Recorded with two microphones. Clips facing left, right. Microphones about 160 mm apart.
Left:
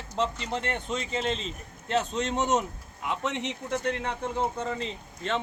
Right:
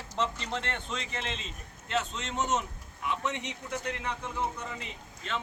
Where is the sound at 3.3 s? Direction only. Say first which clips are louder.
Left 6 dB; 25° left (ahead or behind).